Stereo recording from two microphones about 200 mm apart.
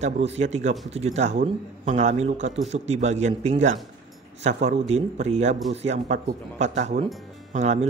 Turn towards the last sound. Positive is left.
turn(degrees=-35)  # may be behind; listen again after turning